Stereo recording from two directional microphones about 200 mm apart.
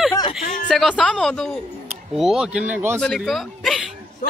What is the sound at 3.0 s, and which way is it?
Speech, centre (ahead or behind).